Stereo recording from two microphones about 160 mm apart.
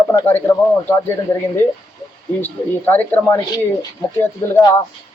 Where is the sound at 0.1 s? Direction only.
15° left (ahead or behind).